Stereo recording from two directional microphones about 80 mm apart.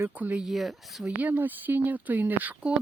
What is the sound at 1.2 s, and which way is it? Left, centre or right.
Speech, right.